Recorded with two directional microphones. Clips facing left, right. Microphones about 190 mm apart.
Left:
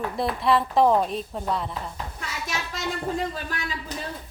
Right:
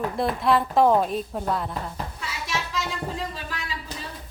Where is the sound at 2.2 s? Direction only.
50° left (ahead or behind).